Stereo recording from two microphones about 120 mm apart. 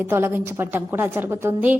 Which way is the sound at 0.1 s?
20° right (ahead or behind).